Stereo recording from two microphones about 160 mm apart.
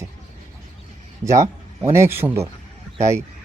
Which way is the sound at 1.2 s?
15° right (ahead or behind).